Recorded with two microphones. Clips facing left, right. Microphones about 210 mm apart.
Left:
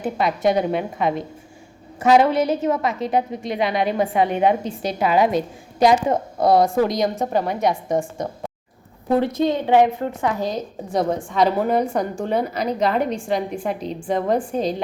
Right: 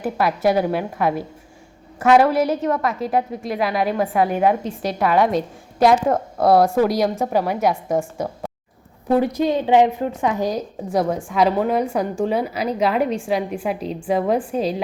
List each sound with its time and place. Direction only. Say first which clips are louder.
0.0 s a woman's voice: right 1 dB; 5° right (ahead or behind)